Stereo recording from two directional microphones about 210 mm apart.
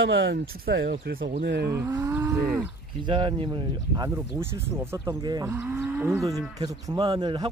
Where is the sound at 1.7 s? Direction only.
15° right (ahead or behind).